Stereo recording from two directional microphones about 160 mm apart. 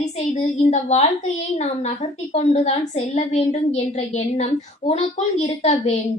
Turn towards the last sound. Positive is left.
turn(degrees=45)  # may be behind; listen again after turning